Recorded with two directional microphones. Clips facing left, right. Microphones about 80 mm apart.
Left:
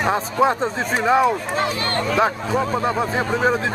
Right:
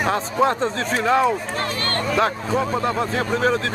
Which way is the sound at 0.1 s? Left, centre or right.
Centre.